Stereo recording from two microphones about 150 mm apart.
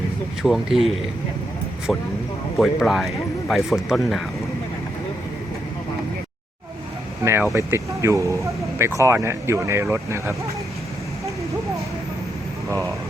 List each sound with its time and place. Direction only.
0.4 s speech: centre (ahead or behind)
1.9 s speech: centre (ahead or behind)
7.5 s speech: 20° right (ahead or behind)